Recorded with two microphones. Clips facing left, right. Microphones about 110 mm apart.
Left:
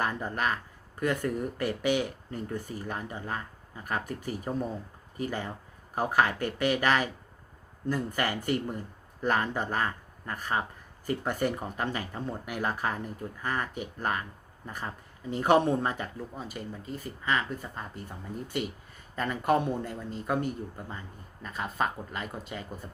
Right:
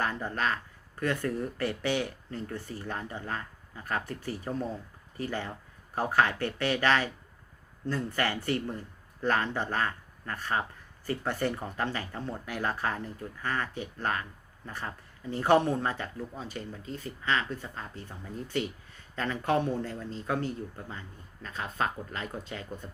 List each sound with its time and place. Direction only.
0.0 s speech: 15° left (ahead or behind)
19.1 s speech: 10° left (ahead or behind)